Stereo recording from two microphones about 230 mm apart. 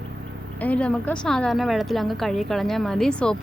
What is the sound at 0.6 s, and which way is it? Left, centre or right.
A woman's voice, centre.